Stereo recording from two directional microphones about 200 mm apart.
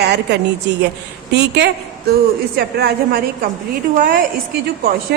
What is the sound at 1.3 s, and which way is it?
A woman's voice, 60° right (ahead or behind).